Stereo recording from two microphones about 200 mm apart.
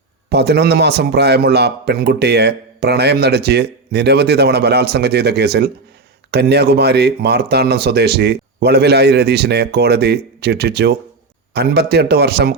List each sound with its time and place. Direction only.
0.3 s a man's voice: 55° right (ahead or behind)